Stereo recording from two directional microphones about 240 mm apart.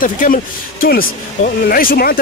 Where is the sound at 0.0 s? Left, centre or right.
Left.